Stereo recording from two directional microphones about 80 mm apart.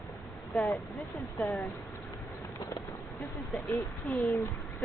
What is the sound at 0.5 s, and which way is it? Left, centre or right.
Speech, centre.